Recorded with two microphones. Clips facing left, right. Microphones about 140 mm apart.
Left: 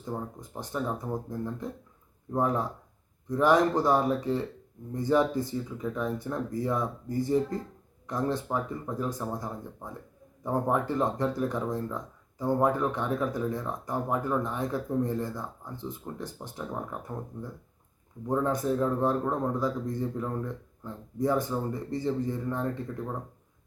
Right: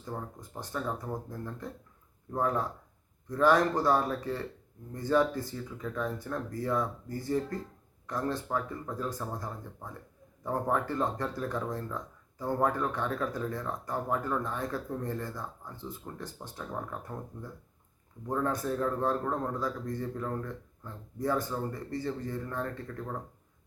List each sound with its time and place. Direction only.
0.0 s speech: 15° left (ahead or behind)